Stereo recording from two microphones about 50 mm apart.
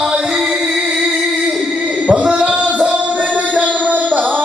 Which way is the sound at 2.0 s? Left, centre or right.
Right.